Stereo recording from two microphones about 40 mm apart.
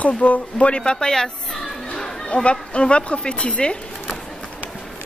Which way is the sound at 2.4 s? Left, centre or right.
Left.